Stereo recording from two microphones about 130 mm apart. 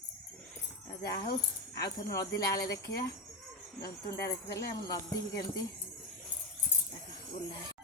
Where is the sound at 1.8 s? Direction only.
30° left (ahead or behind).